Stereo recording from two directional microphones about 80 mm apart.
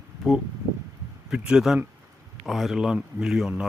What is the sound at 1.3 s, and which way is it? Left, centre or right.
Speech, centre.